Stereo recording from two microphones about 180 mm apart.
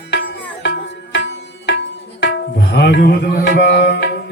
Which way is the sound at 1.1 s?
80° left.